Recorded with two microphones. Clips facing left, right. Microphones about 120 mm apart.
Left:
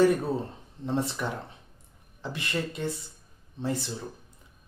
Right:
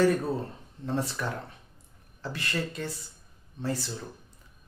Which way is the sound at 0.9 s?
20° left (ahead or behind).